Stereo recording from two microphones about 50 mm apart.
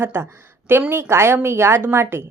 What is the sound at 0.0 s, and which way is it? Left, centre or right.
A woman's voice, right.